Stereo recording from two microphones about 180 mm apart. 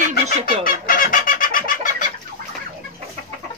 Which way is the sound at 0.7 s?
50° left (ahead or behind).